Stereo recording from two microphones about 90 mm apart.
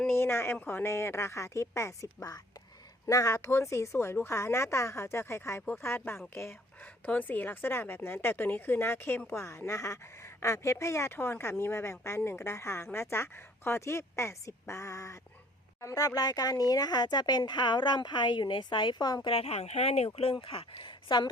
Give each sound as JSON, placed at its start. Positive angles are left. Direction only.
{"t": 0.2, "sound": "speech", "side_deg": 25}
{"t": 3.1, "sound": "speech", "side_deg": 35}
{"t": 20.1, "sound": "speech", "side_deg": 80}